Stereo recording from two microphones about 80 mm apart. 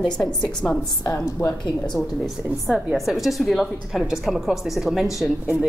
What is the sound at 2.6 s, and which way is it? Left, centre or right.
A woman's voice, centre.